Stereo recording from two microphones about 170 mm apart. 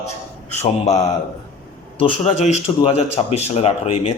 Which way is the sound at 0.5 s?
40° left (ahead or behind).